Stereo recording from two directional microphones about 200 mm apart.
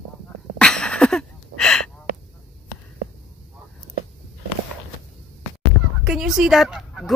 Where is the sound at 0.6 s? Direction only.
5° left (ahead or behind).